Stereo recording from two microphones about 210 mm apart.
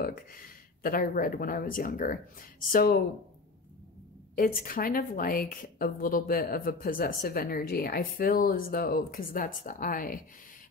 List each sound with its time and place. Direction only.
0.8 s a woman's voice: 45° left (ahead or behind)
4.4 s a woman's voice: 45° left (ahead or behind)